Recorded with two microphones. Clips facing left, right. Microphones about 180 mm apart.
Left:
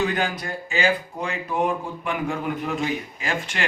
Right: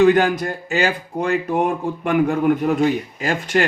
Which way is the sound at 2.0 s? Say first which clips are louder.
Right 10 dB; 55° right (ahead or behind).